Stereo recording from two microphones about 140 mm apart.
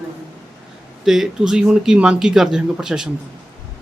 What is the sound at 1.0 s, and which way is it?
Mantra, 5° right (ahead or behind).